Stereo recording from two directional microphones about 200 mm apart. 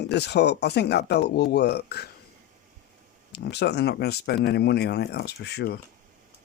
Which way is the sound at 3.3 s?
55° left (ahead or behind).